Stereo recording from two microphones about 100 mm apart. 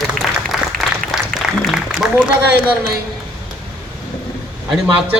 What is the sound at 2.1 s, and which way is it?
Speech, 20° right (ahead or behind).